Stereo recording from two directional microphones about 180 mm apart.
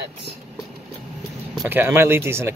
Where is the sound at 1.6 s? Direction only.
10° right (ahead or behind).